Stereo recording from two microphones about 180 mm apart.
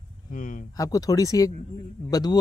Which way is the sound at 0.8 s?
20° left (ahead or behind).